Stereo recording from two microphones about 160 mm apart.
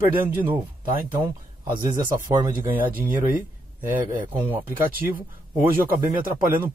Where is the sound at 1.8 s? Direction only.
25° right (ahead or behind).